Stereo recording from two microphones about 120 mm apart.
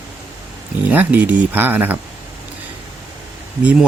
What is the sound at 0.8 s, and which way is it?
Speech, 15° right (ahead or behind).